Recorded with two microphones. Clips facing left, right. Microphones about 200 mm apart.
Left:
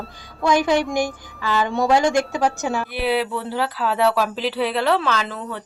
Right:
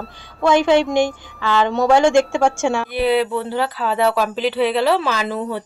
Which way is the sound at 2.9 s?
5° left (ahead or behind).